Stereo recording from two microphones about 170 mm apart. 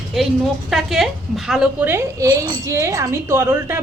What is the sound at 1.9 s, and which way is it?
A woman's voice, 20° right (ahead or behind).